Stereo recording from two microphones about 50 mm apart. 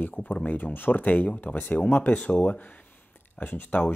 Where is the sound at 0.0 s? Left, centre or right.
Left.